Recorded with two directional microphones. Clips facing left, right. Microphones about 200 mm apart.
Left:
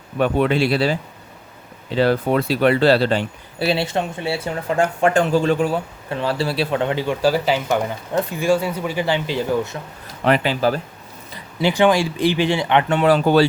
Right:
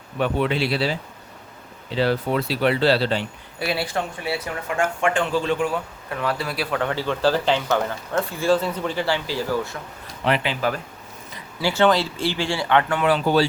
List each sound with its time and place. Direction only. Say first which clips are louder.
0.2 s speech: left 4 dB; 50° left (ahead or behind)
2.0 s speech: left 4 dB; 50° left (ahead or behind)
3.6 s speech: left 5 dB; 25° left (ahead or behind)
10.2 s speech: left 5 dB; 40° left (ahead or behind)
11.6 s speech: left 3 dB; 15° left (ahead or behind)
13.1 s speech: left 6 dB; 45° left (ahead or behind)